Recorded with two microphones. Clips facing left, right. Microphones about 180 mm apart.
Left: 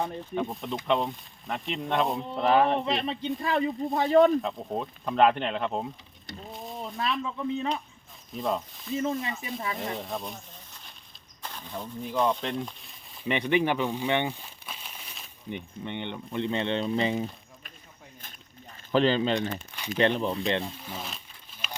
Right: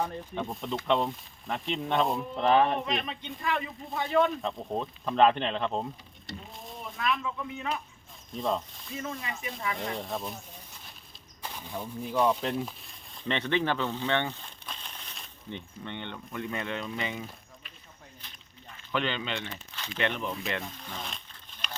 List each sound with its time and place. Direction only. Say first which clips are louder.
0.3 s speech: left 3 dB; centre (ahead or behind)
2.7 s speech: left 4 dB; 30° left (ahead or behind)
4.4 s speech: left 1 dB; centre (ahead or behind)
6.7 s speech: even; 25° left (ahead or behind)
8.3 s speech: left 1 dB; centre (ahead or behind)
9.0 s speech: left 7 dB; 30° left (ahead or behind)
9.9 s speech: even; centre (ahead or behind)
11.4 s speech: even; 10° right (ahead or behind)
13.2 s speech: left 3 dB; 15° left (ahead or behind); by 17.2 s 35° left (ahead or behind)
18.9 s speech: left 8 dB; 35° left (ahead or behind)
20.7 s insect: left 2 dB; 5° left (ahead or behind)